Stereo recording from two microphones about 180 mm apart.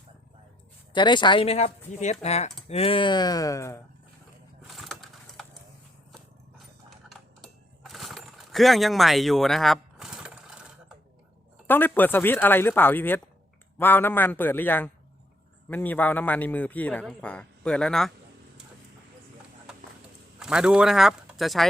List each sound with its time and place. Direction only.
0.9 s speech: 25° left (ahead or behind)
4.6 s sewing machine: centre (ahead or behind)
7.1 s mechanisms: centre (ahead or behind)
11.7 s a man's voice: 10° left (ahead or behind)
20.4 s speech: 5° right (ahead or behind)